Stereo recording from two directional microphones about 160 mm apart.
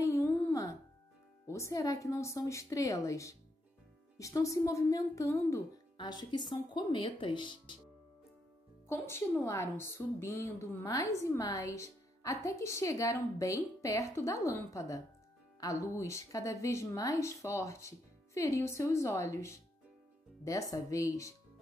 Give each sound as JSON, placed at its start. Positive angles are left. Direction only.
{"t": 0.0, "sound": "music", "side_deg": 15}
{"t": 1.5, "sound": "a woman's voice", "side_deg": 20}
{"t": 8.8, "sound": "a woman's voice", "side_deg": 15}